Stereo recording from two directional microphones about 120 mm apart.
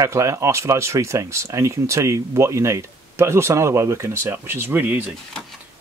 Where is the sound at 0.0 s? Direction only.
25° right (ahead or behind).